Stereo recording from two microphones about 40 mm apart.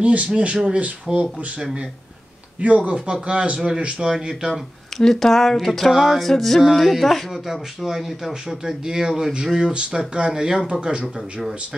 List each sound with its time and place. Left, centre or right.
0.0 s speech: right
5.0 s speech: centre
5.9 s speech: centre
6.2 s speech: centre
7.8 s speech: centre
8.3 s speech: centre